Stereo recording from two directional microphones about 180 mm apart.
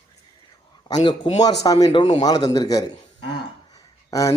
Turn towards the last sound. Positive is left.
turn(degrees=20)  # may be behind; listen again after turning